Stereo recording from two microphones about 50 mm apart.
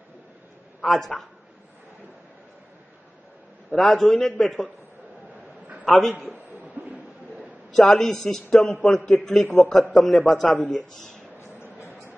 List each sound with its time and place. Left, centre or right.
0.7 s a man's voice: centre
3.7 s a man's voice: centre
5.9 s a man's voice: centre
6.8 s a sound: right
7.7 s a man's voice: centre
11.3 s a sound: left